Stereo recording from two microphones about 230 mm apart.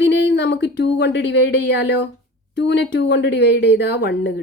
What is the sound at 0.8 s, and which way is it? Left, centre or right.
A woman's voice, left.